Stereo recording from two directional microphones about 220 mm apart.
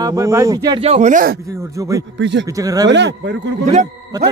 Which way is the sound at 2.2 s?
55° right (ahead or behind).